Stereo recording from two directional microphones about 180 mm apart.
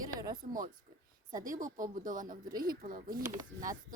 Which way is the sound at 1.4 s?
45° right (ahead or behind).